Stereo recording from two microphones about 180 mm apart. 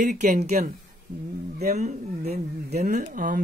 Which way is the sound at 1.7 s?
40° right (ahead or behind).